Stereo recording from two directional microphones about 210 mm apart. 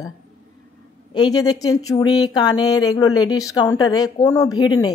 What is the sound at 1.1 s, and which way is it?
Speech, 20° left (ahead or behind).